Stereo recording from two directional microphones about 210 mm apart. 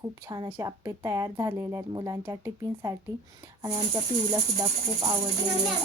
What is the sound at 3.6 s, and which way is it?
Speech, 15° right (ahead or behind).